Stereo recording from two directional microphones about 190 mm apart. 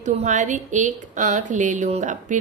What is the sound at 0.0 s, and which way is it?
A woman's voice, 40° right (ahead or behind).